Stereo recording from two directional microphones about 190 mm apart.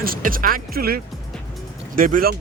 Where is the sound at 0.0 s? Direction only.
50° right (ahead or behind).